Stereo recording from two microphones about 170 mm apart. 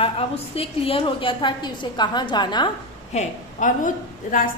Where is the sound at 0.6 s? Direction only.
35° left (ahead or behind).